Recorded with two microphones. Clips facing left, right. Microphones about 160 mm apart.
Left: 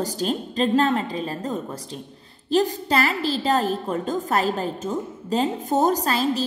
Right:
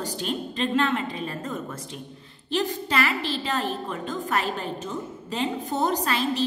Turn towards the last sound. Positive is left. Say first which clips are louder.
# left 3 dB
turn(degrees=40)  # may be behind; listen again after turning